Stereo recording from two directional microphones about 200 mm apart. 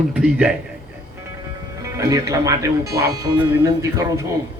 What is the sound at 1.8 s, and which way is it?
A man's voice, 15° right (ahead or behind).